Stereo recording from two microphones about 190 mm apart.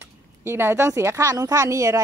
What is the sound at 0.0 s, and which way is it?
Speech, 10° right (ahead or behind).